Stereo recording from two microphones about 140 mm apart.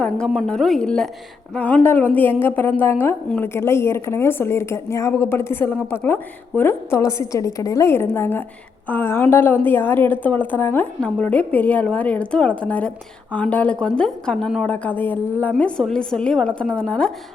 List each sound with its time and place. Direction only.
0.0 s a woman's voice: 5° left (ahead or behind)